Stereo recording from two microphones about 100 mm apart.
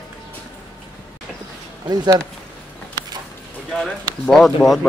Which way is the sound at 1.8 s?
45° right (ahead or behind).